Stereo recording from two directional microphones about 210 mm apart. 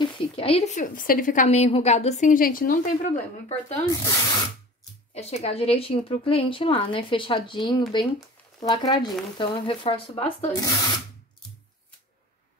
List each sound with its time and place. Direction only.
0.0 s a woman's voice: 30° left (ahead or behind)
5.1 s a woman's voice: 30° left (ahead or behind)